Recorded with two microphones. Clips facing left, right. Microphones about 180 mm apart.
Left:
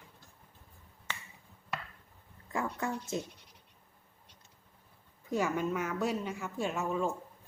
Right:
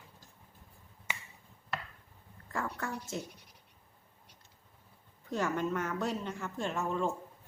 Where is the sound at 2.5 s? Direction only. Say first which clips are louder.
Left 3 dB; 15° left (ahead or behind).